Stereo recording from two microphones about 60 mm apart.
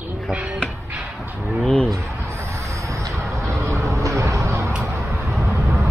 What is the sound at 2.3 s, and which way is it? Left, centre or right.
Vehicle, right.